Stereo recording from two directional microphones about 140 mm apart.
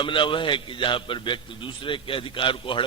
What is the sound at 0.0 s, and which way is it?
A man's voice, 35° left (ahead or behind).